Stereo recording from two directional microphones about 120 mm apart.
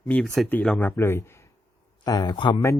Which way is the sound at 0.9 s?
20° left (ahead or behind).